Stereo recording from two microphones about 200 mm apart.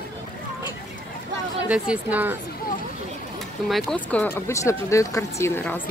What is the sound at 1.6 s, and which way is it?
Speech, 5° right (ahead or behind).